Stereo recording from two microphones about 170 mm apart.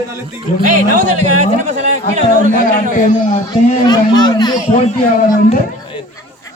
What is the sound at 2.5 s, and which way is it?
Speech, 50° left (ahead or behind).